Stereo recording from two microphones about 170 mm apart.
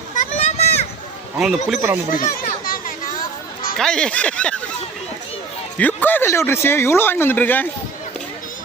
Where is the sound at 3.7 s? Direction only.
5° left (ahead or behind).